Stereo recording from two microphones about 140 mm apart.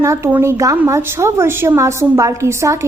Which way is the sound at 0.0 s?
15° right (ahead or behind).